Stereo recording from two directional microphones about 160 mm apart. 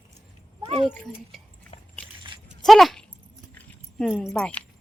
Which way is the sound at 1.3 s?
Centre (ahead or behind).